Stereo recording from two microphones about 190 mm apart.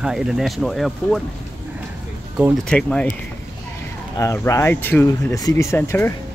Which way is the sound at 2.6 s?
5° left (ahead or behind).